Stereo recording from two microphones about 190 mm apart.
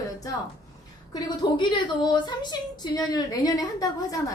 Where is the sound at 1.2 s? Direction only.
25° left (ahead or behind).